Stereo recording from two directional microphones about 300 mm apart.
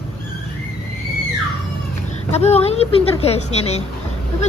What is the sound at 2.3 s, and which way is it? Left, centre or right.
Speech, left.